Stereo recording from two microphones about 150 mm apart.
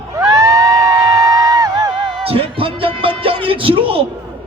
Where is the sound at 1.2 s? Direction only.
25° right (ahead or behind).